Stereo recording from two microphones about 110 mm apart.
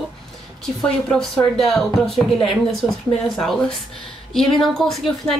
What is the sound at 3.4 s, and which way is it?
Speech, 5° left (ahead or behind).